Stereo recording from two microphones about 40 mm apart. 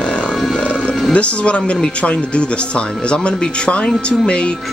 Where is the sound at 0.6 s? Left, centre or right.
Left.